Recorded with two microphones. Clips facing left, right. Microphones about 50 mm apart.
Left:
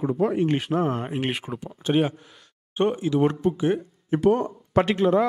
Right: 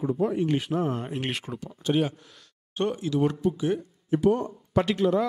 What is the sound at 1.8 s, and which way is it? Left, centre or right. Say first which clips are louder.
Speech: left 3 dB; left.